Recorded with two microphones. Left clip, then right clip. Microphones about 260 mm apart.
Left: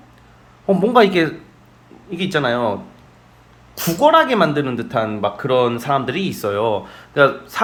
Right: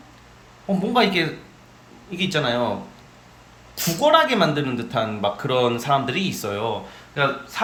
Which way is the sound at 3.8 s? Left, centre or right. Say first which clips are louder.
Left 4 dB; centre.